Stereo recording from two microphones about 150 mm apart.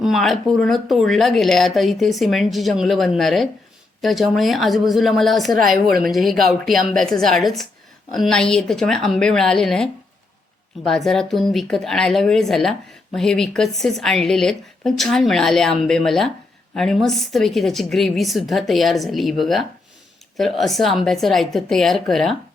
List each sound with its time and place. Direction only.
0.0 s speech: centre (ahead or behind)
5.8 s speech: 75° right (ahead or behind)
6.1 s speech: centre (ahead or behind)